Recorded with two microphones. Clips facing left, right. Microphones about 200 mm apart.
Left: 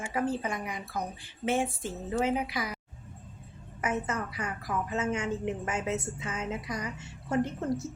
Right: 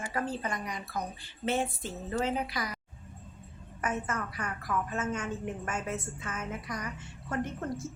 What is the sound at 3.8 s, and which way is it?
Speech, 20° left (ahead or behind).